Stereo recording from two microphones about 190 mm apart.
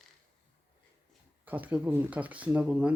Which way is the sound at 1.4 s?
10° right (ahead or behind).